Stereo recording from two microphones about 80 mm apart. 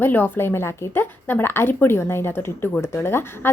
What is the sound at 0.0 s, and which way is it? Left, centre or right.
A woman's voice, left.